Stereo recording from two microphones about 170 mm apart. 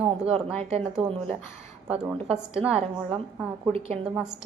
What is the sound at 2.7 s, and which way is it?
Speech, 35° right (ahead or behind).